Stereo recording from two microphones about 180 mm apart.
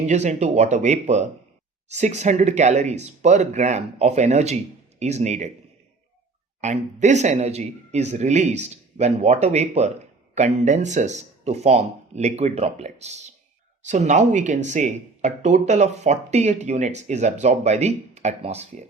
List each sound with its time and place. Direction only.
0.0 s a man's voice: 40° right (ahead or behind)
6.6 s a man's voice: 40° right (ahead or behind)